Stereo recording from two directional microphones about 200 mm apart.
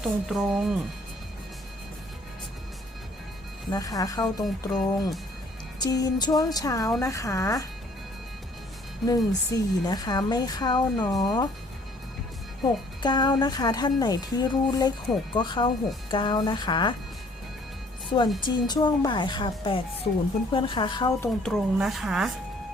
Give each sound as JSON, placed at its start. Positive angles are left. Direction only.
{"t": 0.0, "sound": "speech", "side_deg": 0}
{"t": 3.7, "sound": "speech", "side_deg": 15}
{"t": 9.0, "sound": "speech", "side_deg": 20}
{"t": 13.0, "sound": "speech", "side_deg": 20}
{"t": 18.3, "sound": "speech", "side_deg": 25}
{"t": 21.2, "sound": "speech", "side_deg": 0}